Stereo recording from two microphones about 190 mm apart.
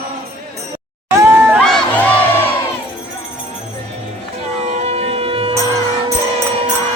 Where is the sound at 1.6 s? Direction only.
5° left (ahead or behind).